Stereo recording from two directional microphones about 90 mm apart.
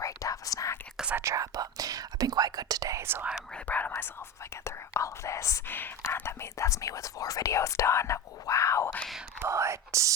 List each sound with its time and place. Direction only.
0.0 s whispering: 40° left (ahead or behind)
1.1 s whispering: 35° right (ahead or behind)
3.0 s whispering: 25° right (ahead or behind)
3.5 s whispering: 15° left (ahead or behind)
4.6 s whispering: 35° left (ahead or behind)
5.6 s whispering: 25° left (ahead or behind)
9.4 s whispering: 30° right (ahead or behind)